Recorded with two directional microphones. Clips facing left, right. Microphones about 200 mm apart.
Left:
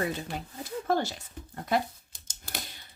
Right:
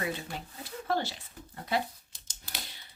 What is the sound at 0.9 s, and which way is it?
Speech, 45° left (ahead or behind).